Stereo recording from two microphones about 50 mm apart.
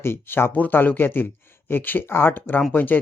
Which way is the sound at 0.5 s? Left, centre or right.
Left.